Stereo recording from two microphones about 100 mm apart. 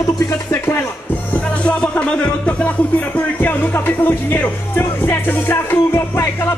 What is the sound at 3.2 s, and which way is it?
Speech, 15° left (ahead or behind).